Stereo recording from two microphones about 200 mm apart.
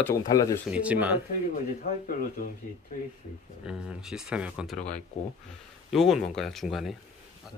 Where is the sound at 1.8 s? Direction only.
50° left (ahead or behind).